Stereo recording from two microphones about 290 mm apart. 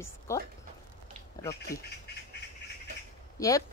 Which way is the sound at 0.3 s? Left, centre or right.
Centre.